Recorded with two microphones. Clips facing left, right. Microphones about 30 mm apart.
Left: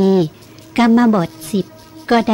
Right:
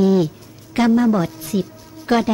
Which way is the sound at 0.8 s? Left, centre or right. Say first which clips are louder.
Left 3 dB; left.